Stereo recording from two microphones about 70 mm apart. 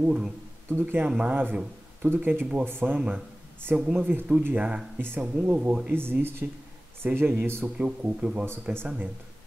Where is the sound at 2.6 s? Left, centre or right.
Right.